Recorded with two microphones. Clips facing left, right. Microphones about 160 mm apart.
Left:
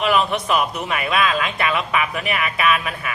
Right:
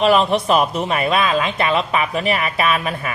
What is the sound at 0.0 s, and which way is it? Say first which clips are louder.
Speech: right 4 dB; 30° right (ahead or behind).